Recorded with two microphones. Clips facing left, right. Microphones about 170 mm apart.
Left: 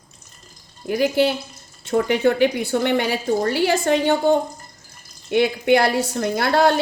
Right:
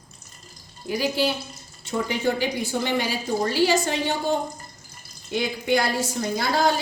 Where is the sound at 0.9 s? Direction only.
55° left (ahead or behind).